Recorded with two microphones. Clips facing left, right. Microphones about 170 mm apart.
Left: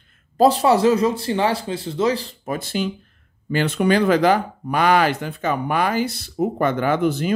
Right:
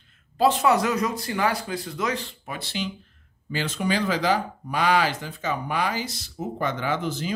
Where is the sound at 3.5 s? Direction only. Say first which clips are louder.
Left 8 dB; 60° left (ahead or behind).